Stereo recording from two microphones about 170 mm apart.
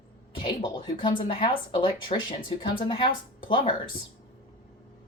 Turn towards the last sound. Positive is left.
turn(degrees=30)  # may be behind; listen again after turning